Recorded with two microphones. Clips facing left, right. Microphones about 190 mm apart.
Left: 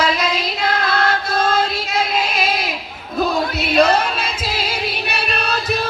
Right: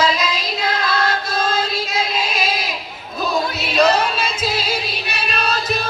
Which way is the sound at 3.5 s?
55° left (ahead or behind).